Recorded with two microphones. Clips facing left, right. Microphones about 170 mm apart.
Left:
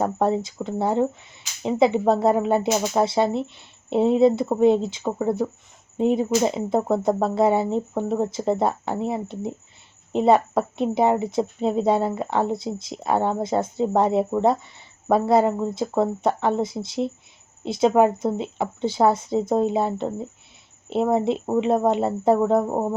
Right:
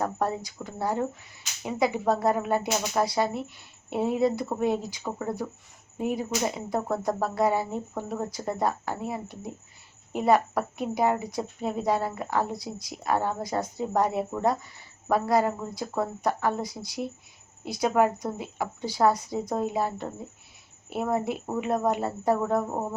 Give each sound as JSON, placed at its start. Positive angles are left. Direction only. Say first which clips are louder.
{"t": 0.0, "sound": "a woman's voice", "louder": "left 7 dB", "side_deg": 25}